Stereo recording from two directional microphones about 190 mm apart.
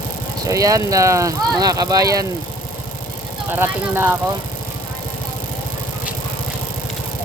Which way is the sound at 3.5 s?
10° right (ahead or behind).